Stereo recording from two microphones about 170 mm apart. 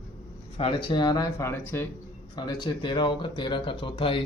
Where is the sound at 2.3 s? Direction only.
25° left (ahead or behind).